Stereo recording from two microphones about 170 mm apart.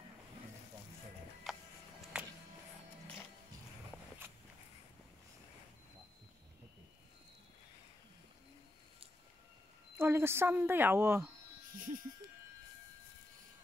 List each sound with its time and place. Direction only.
1.4 s music: centre (ahead or behind)
9.9 s speech: 15° right (ahead or behind)
11.7 s a sound: 50° right (ahead or behind)